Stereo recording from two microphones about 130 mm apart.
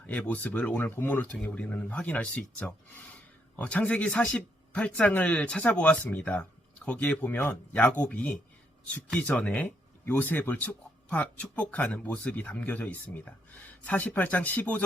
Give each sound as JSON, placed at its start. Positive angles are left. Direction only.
{"t": 0.1, "sound": "speech", "side_deg": 10}